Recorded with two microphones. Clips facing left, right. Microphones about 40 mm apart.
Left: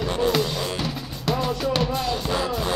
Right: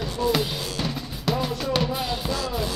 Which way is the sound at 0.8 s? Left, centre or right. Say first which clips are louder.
Even; centre.